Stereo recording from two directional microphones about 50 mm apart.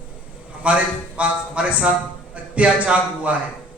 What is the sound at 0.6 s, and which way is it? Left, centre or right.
A man's voice, right.